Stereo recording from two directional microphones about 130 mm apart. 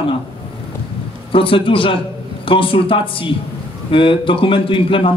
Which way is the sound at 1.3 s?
40° left (ahead or behind).